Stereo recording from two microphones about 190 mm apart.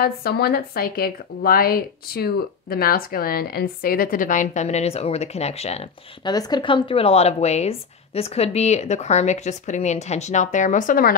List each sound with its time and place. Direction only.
0.0 s speech: 55° left (ahead or behind); by 6.3 s 35° left (ahead or behind)
6.3 s a woman's voice: 20° left (ahead or behind); by 11.1 s 45° left (ahead or behind)